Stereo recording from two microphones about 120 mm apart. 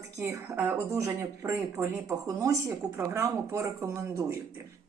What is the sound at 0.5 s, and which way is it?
Speech, 15° right (ahead or behind).